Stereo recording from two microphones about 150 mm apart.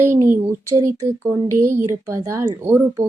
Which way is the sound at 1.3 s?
15° right (ahead or behind).